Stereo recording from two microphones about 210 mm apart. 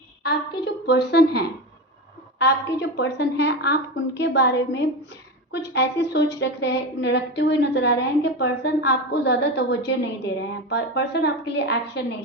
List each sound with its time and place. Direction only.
0.2 s a woman's voice: 50° left (ahead or behind)